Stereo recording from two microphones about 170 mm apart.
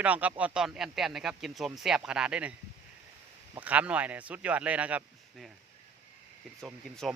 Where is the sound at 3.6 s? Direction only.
10° right (ahead or behind).